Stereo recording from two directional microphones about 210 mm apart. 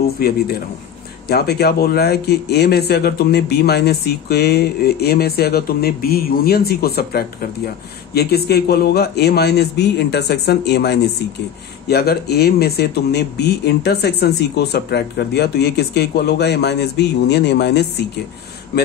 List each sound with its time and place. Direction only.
0.2 s speech: 45° left (ahead or behind)